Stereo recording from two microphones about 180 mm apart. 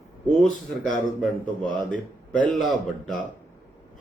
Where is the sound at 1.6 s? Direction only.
45° left (ahead or behind).